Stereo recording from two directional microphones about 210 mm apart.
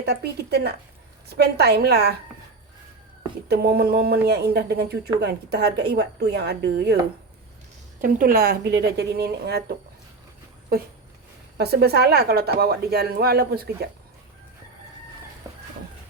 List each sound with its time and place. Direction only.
0.1 s a woman's voice: 50° right (ahead or behind)
3.5 s a woman's voice: 45° right (ahead or behind)
8.0 s a woman's voice: 45° right (ahead or behind)
11.5 s a woman's voice: 50° right (ahead or behind)